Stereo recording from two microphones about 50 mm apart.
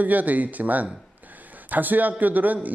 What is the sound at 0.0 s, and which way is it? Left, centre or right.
A man's voice, right.